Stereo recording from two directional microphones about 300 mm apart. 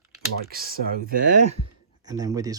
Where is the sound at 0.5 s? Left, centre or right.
Right.